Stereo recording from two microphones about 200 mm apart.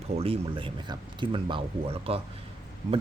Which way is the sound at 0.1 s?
30° right (ahead or behind).